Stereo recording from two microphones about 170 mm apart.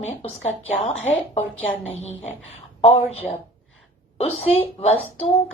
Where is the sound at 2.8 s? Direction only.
35° left (ahead or behind).